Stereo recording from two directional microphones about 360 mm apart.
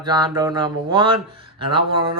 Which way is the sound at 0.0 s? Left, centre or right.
Centre.